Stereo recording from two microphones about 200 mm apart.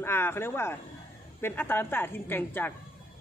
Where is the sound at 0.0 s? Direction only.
10° left (ahead or behind).